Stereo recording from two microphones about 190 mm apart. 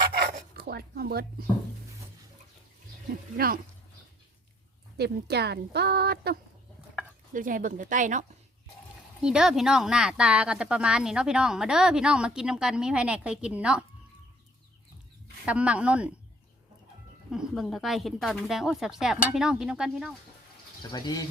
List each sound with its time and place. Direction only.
0.5 s speech: 55° right (ahead or behind)
3.3 s a woman's voice: 50° right (ahead or behind)
4.9 s a woman's voice: 60° right (ahead or behind)
7.3 s a woman's voice: 45° right (ahead or behind)
9.2 s speech: 5° right (ahead or behind)
15.4 s speech: 5° right (ahead or behind)
17.3 s speech: centre (ahead or behind)
20.9 s speech: 20° left (ahead or behind)